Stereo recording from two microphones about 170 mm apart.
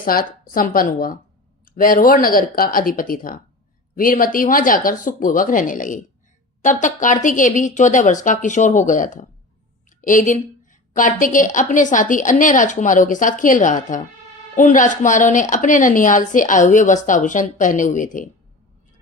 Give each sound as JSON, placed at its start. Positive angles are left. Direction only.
{"t": 0.0, "sound": "a woman's voice", "side_deg": 55}